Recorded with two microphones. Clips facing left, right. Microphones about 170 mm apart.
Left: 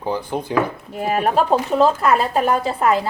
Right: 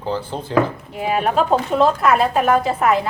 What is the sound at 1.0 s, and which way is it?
A woman's voice, 40° left (ahead or behind).